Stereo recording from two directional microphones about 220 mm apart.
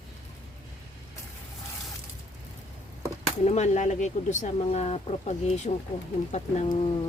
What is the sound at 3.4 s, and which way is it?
Speech, 30° left (ahead or behind).